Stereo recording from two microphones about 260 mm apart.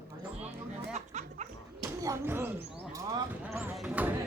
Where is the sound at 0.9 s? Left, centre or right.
Right.